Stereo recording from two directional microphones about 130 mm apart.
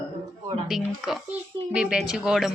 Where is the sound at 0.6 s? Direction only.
Centre (ahead or behind).